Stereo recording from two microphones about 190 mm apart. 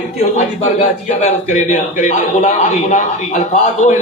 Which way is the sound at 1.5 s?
40° left (ahead or behind).